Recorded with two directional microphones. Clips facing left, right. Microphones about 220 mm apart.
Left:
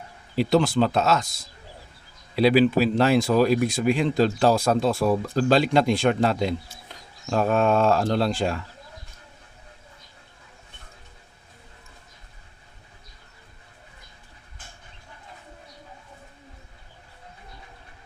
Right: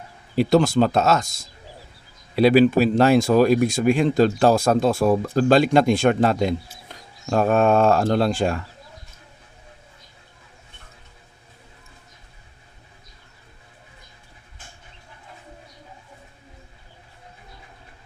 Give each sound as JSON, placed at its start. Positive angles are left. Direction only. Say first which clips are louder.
{"t": 0.3, "sound": "speech", "louder": "right 3 dB", "side_deg": -45}